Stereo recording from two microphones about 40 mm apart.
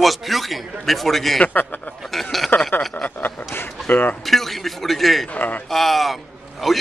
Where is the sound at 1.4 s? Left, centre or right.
Left.